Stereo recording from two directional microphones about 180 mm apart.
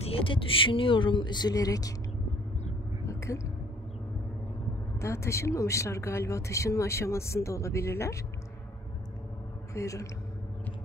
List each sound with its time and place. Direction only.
0.0 s speech: 30° left (ahead or behind)
3.1 s a sound: 15° left (ahead or behind)
5.0 s speech: 15° left (ahead or behind)
9.8 s speech: 15° left (ahead or behind)